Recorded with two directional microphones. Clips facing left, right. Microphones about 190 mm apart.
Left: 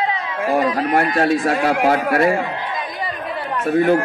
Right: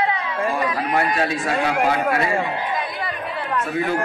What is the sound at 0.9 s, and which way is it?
A man's voice, 50° left (ahead or behind).